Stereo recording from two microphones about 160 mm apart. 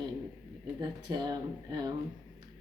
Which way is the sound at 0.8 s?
25° right (ahead or behind).